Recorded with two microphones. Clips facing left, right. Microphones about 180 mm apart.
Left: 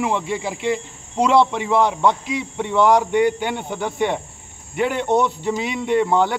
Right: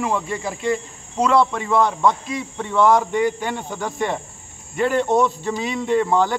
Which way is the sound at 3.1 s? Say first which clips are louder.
Left 3 dB; 15° left (ahead or behind).